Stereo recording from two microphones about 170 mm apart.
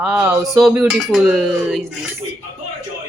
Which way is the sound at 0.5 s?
Centre (ahead or behind).